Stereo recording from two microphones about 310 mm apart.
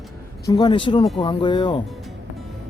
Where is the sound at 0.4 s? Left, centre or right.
Centre.